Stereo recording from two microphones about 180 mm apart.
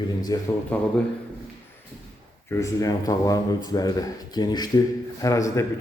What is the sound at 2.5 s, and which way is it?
A man's voice, 15° left (ahead or behind).